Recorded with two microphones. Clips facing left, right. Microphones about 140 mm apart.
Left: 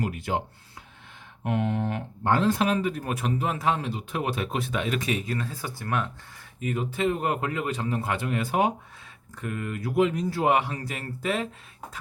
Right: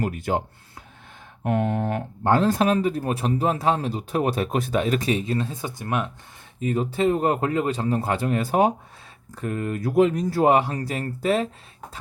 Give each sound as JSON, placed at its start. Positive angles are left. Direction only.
{"t": 0.0, "sound": "speech", "side_deg": -45}
{"t": 1.5, "sound": "speech", "side_deg": -45}
{"t": 6.6, "sound": "speech", "side_deg": -30}